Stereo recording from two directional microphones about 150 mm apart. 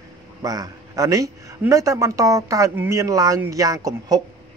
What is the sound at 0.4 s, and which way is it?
A man's voice, 25° right (ahead or behind).